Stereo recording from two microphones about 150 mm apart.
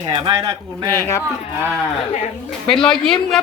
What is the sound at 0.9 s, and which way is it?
Speech, 20° left (ahead or behind).